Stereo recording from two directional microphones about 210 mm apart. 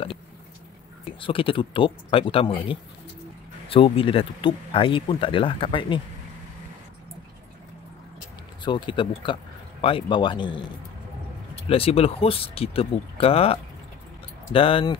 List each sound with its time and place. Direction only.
1.2 s speech: 25° left (ahead or behind)
8.6 s speech: 20° left (ahead or behind)
11.7 s speech: 25° left (ahead or behind)